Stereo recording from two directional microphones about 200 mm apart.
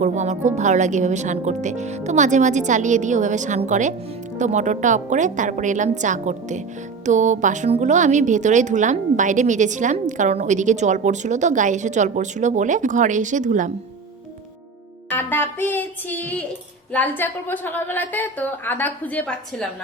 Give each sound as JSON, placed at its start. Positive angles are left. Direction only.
{"t": 0.0, "sound": "speech", "side_deg": -35}
{"t": 15.1, "sound": "a woman's voice", "side_deg": 10}